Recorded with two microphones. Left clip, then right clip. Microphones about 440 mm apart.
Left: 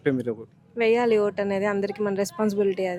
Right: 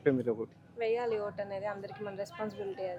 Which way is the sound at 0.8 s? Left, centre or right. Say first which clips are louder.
Left 12 dB; left.